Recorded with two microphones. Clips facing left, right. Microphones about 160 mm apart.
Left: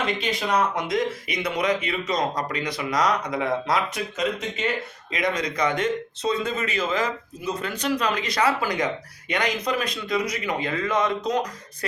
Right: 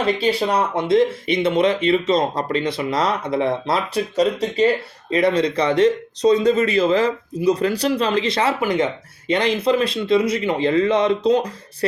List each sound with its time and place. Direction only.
0.0 s speech: 30° right (ahead or behind)